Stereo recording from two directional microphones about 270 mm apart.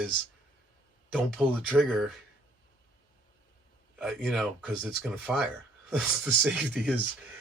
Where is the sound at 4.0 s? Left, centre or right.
Centre.